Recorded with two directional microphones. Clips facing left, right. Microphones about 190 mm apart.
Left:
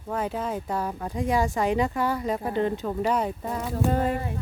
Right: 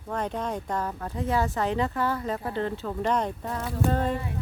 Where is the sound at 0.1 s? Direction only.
5° left (ahead or behind).